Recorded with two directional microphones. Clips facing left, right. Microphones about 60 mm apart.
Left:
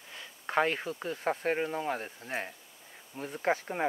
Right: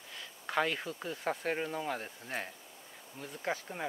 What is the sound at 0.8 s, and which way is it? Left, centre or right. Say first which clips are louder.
Speech: left 4 dB; centre.